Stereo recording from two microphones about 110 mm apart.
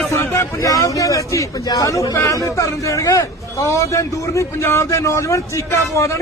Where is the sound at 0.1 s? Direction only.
30° left (ahead or behind).